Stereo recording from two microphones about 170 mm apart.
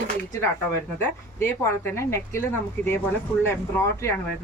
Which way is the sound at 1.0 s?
15° left (ahead or behind).